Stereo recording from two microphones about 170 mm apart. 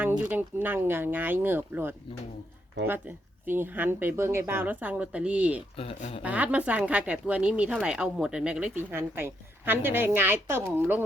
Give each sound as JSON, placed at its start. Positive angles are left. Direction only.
{"t": 0.0, "sound": "speech", "side_deg": -10}
{"t": 3.4, "sound": "speech", "side_deg": -10}
{"t": 5.7, "sound": "speech", "side_deg": 35}
{"t": 6.2, "sound": "speech", "side_deg": -10}